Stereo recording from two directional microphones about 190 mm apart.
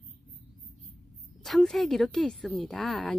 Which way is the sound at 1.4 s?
Centre (ahead or behind).